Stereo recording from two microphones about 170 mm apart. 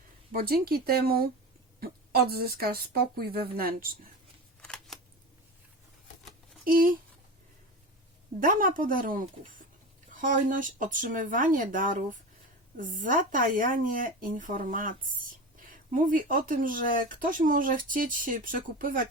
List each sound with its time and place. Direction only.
0.3 s speech: 60° right (ahead or behind)
2.3 s speech: 65° right (ahead or behind)
4.6 s camera: 5° left (ahead or behind)
6.7 s speech: 55° right (ahead or behind)
8.4 s speech: 55° right (ahead or behind)